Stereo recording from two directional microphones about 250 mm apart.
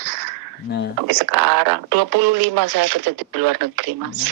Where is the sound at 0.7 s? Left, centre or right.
Left.